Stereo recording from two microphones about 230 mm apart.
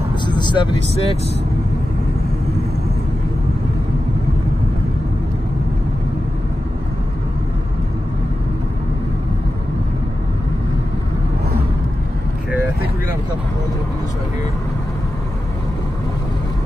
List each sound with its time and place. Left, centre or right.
0.3 s speech: centre